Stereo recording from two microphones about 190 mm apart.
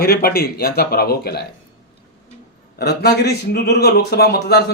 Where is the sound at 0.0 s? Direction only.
55° left (ahead or behind).